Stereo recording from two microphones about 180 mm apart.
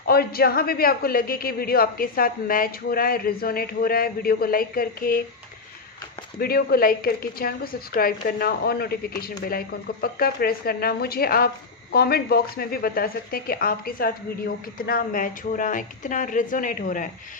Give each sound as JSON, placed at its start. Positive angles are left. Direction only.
{"t": 0.1, "sound": "a man's voice", "side_deg": 60}
{"t": 6.4, "sound": "a man's voice", "side_deg": 60}